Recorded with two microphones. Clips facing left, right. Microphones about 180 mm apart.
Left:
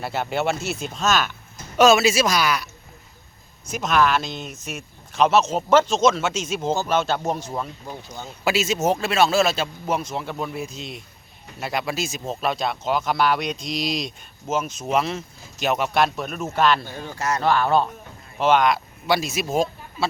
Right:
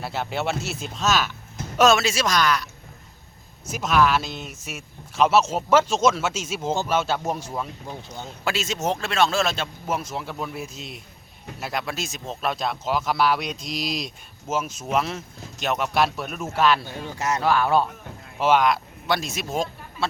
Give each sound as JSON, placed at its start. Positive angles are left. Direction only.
{"t": 0.0, "sound": "speech", "side_deg": 0}
{"t": 3.7, "sound": "speech", "side_deg": -5}
{"t": 7.5, "sound": "speech", "side_deg": 5}
{"t": 17.2, "sound": "speech", "side_deg": -20}
{"t": 17.4, "sound": "speech", "side_deg": -5}